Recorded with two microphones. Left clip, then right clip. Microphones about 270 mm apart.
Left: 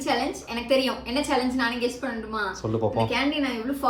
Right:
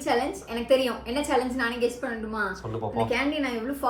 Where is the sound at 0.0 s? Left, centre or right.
Centre.